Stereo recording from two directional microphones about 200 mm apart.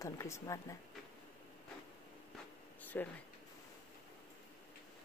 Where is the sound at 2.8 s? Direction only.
10° left (ahead or behind).